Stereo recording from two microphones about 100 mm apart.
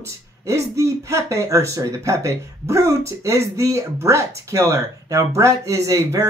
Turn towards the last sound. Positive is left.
turn(degrees=-30)  # may be behind; listen again after turning